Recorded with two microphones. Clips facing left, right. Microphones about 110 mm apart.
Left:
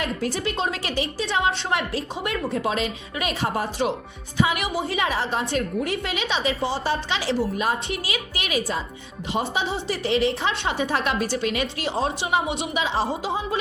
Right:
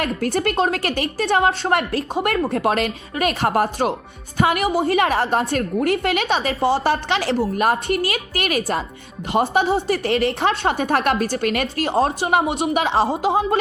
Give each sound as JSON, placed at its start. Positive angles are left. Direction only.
{"t": 0.0, "sound": "a woman's voice", "side_deg": -55}
{"t": 4.4, "sound": "a woman's voice", "side_deg": -55}